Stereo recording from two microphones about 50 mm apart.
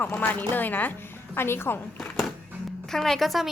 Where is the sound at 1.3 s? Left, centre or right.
Left.